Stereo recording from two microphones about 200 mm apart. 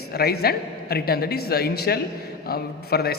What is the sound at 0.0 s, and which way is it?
A man's voice, 50° left (ahead or behind).